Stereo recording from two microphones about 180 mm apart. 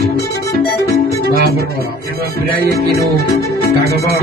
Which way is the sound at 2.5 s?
60° right (ahead or behind).